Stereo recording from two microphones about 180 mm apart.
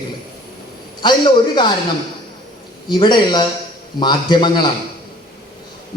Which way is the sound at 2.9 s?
25° left (ahead or behind).